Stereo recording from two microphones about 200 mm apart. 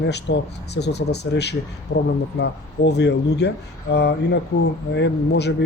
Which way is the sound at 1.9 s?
70° left (ahead or behind).